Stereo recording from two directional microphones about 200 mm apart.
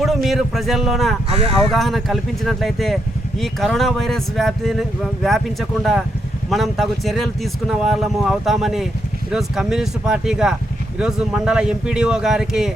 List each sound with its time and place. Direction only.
0.0 s speech: centre (ahead or behind)
1.3 s speech: 30° right (ahead or behind)
1.7 s speech: centre (ahead or behind)